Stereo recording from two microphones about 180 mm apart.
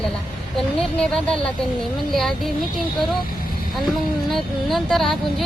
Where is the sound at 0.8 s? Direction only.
5° left (ahead or behind).